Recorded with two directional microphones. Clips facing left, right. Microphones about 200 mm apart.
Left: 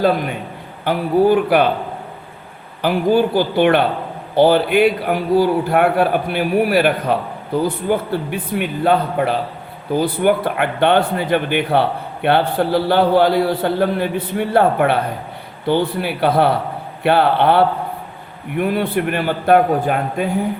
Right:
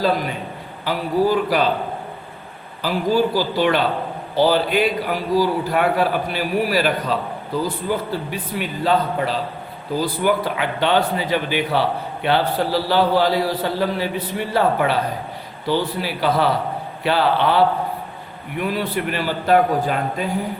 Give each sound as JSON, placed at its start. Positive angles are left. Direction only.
{"t": 0.9, "sound": "a man's voice", "side_deg": 60}
{"t": 2.8, "sound": "a man's voice", "side_deg": 55}